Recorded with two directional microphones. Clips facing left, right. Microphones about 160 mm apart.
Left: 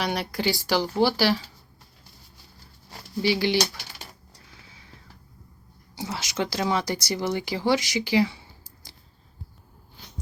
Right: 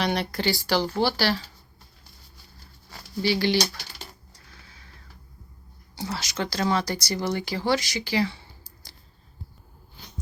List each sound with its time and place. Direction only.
0.0 s speech: 10° left (ahead or behind)
3.2 s speech: 15° left (ahead or behind)
6.0 s speech: 20° left (ahead or behind)